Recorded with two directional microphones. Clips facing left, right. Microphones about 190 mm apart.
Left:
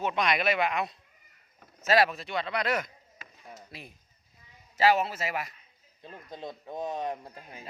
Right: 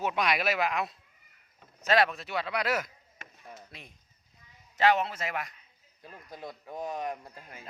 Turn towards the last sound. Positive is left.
turn(degrees=15)  # may be behind; listen again after turning